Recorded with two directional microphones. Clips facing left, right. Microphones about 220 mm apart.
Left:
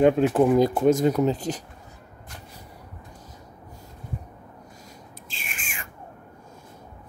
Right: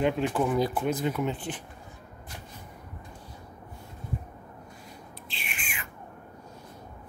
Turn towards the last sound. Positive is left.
turn(degrees=45)  # may be behind; listen again after turning